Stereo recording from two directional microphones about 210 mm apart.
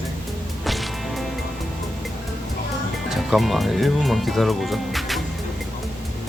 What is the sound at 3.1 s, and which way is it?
Speech, centre (ahead or behind).